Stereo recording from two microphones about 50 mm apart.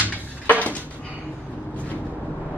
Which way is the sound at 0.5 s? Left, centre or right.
Left.